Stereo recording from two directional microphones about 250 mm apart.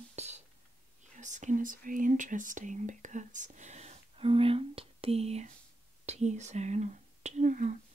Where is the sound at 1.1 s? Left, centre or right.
Right.